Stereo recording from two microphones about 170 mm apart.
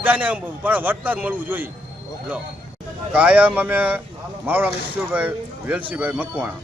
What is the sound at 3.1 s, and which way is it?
A man's voice, 10° right (ahead or behind).